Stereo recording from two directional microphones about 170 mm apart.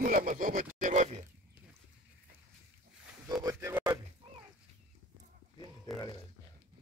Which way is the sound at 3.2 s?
25° right (ahead or behind).